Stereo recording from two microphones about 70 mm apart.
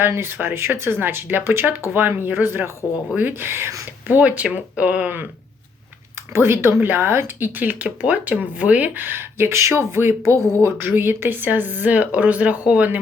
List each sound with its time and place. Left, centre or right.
0.0 s speech: right
4.0 s speech: right
6.3 s speech: right